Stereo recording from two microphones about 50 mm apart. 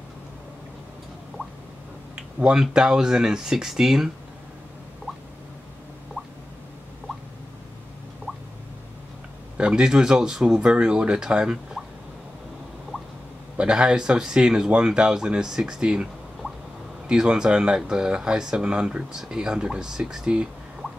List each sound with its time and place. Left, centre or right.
2.1 s speech: centre
9.6 s speech: centre
13.6 s speech: centre
17.1 s speech: centre